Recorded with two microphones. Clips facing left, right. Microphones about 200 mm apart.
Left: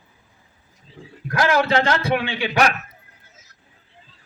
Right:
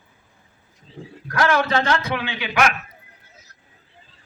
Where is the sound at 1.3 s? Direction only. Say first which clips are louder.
Left 1 dB; 25° left (ahead or behind).